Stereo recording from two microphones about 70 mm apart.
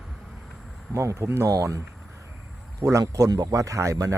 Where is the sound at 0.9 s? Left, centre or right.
Right.